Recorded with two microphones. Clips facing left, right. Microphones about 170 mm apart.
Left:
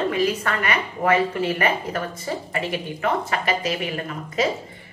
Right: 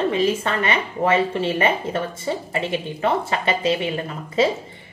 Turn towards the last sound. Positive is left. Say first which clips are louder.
# right 3 dB
turn(degrees=-25)  # may be behind; listen again after turning